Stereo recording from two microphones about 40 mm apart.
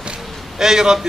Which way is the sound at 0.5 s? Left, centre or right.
Centre.